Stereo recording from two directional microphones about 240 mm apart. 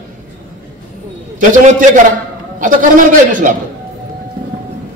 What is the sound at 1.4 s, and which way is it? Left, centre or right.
A man's voice, right.